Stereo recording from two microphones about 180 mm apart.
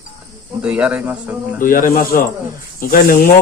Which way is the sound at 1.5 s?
50° left (ahead or behind).